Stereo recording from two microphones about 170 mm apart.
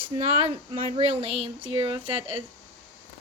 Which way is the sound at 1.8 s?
30° right (ahead or behind).